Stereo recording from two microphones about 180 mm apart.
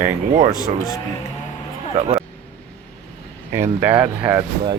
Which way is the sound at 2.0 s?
40° right (ahead or behind).